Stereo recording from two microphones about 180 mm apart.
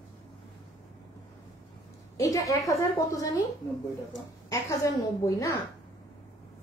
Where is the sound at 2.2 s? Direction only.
20° left (ahead or behind).